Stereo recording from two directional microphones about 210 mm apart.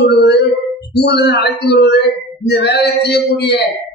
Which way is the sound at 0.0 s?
50° left (ahead or behind).